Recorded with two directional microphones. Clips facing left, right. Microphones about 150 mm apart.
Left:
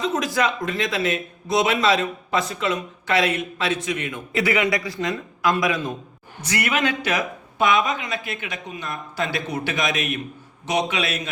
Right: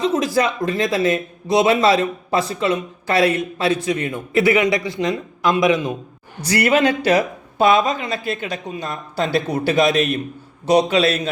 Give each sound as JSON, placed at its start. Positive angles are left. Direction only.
{"t": 0.0, "sound": "a man's voice", "side_deg": -35}
{"t": 6.4, "sound": "a man's voice", "side_deg": -35}